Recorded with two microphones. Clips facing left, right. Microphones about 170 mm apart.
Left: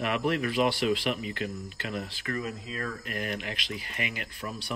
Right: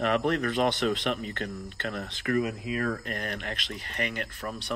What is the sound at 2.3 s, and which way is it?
Speech, 40° right (ahead or behind).